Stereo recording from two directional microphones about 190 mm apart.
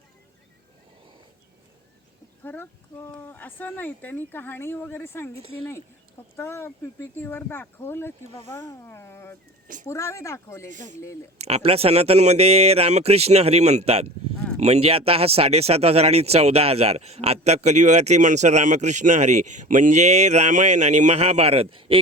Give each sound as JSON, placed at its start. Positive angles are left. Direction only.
{"t": 2.4, "sound": "speech", "side_deg": 10}
{"t": 6.3, "sound": "speech", "side_deg": 15}
{"t": 8.5, "sound": "a sound", "side_deg": 15}
{"t": 9.8, "sound": "speech", "side_deg": 15}
{"t": 10.7, "sound": "speech", "side_deg": -40}